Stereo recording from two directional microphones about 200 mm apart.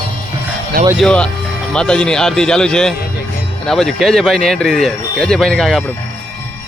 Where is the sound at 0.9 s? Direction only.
5° left (ahead or behind).